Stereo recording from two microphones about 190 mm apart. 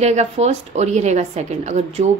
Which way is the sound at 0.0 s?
35° right (ahead or behind).